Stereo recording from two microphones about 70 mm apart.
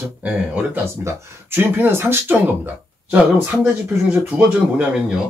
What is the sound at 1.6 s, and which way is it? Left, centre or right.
Speech, right.